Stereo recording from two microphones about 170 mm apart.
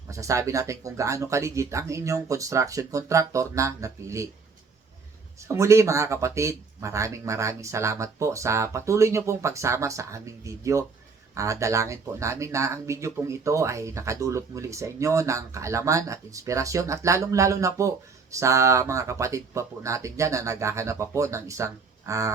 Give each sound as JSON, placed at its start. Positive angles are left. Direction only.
{"t": 0.1, "sound": "speech", "side_deg": -20}
{"t": 5.4, "sound": "speech", "side_deg": -15}